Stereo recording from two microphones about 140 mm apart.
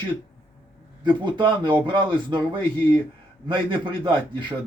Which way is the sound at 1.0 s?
35° right (ahead or behind).